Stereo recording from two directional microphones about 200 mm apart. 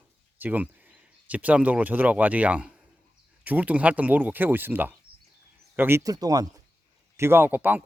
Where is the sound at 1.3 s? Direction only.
5° right (ahead or behind).